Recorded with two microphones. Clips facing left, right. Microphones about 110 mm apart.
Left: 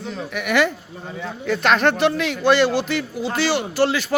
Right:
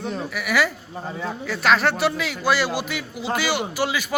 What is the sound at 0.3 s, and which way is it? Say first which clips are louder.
A man's voice: left 4 dB; 5° right (ahead or behind).